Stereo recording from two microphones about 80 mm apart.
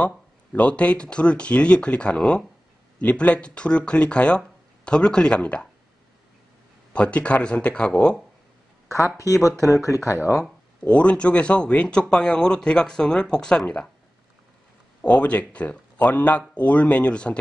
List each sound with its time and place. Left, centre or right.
0.0 s speech: centre
6.9 s speech: centre
8.8 s a sound: left
9.2 s speech: left
10.8 s speech: centre
15.0 s speech: centre